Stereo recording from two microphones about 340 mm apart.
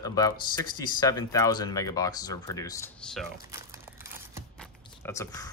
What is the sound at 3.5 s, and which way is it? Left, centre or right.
Crumpling, centre.